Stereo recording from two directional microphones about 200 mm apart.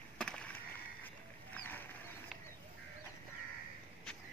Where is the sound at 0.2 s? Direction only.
5° left (ahead or behind).